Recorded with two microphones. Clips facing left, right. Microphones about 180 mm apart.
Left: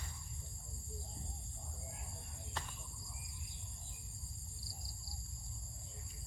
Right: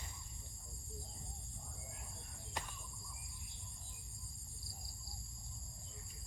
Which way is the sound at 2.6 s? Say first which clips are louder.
Right 1 dB; 15° right (ahead or behind).